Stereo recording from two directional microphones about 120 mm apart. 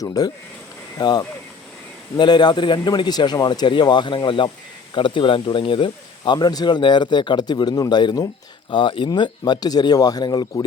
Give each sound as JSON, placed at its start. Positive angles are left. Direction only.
{"t": 0.0, "sound": "speech", "side_deg": 30}